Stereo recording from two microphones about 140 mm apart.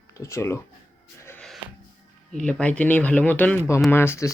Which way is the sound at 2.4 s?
10° left (ahead or behind).